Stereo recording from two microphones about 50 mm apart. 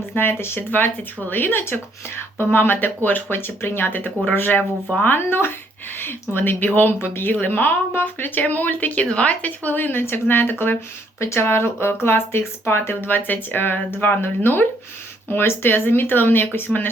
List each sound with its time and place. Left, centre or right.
0.2 s speech: left
11.2 s speech: left